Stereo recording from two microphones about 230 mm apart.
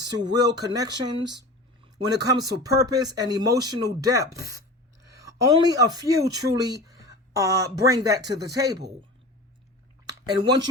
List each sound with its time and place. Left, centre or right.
0.0 s speech: centre
5.6 s speech: centre
10.1 s speech: centre